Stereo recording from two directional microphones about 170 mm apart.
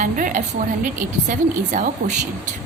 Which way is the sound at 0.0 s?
50° right (ahead or behind).